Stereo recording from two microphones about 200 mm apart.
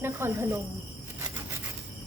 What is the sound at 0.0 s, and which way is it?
Speech, 10° right (ahead or behind).